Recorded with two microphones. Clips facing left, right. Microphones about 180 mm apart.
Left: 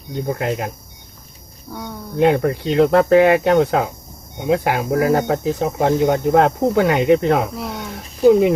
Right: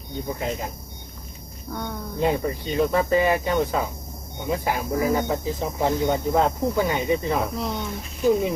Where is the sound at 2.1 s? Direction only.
75° left (ahead or behind).